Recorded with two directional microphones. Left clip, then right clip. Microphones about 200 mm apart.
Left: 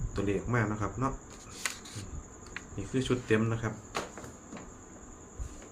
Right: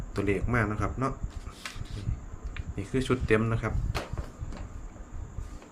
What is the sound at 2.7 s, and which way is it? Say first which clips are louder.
Speech: right 3 dB; 30° right (ahead or behind).